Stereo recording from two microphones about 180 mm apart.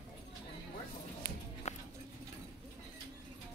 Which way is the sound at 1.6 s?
40° left (ahead or behind).